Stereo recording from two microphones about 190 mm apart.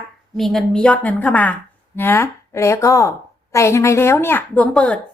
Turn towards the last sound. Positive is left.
turn(degrees=5)  # may be behind; listen again after turning